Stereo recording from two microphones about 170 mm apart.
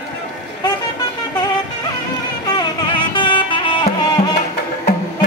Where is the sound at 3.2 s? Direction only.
30° left (ahead or behind).